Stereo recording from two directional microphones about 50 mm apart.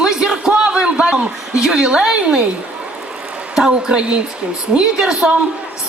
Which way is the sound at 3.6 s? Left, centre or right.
Centre.